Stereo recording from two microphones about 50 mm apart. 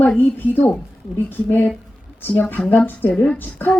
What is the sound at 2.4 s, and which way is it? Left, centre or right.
A woman's voice, left.